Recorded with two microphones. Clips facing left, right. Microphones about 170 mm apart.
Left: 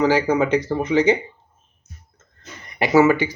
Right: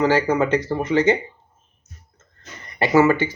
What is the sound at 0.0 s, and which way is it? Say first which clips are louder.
Speech: left 1 dB; 15° left (ahead or behind).